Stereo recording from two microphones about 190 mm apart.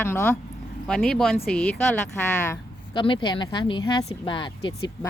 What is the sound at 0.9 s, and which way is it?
Speech, centre (ahead or behind).